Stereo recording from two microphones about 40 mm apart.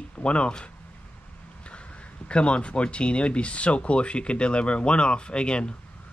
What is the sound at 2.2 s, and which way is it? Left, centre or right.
Speech, left.